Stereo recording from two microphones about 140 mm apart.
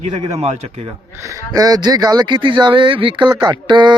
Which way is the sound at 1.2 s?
20° right (ahead or behind).